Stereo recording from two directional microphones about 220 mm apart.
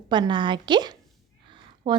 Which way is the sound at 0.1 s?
20° right (ahead or behind).